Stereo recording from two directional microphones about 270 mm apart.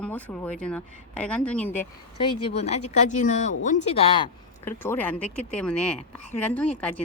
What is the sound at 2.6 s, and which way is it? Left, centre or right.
Speech, left.